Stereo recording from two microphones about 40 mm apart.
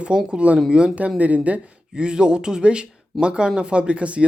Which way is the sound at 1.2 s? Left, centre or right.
Right.